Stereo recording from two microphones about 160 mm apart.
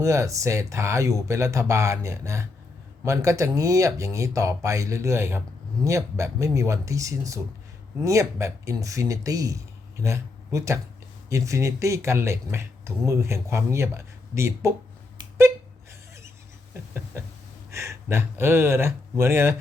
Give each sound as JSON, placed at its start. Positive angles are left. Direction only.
{"t": 0.0, "sound": "speech", "side_deg": -20}
{"t": 15.2, "sound": "a sound", "side_deg": -15}
{"t": 17.7, "sound": "speech", "side_deg": -15}